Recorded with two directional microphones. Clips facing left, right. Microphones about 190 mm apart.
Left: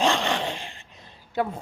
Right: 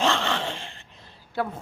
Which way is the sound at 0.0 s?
15° left (ahead or behind).